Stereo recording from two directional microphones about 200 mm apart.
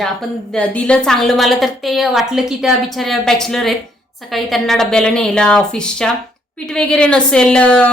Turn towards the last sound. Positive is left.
turn(degrees=5)  # may be behind; listen again after turning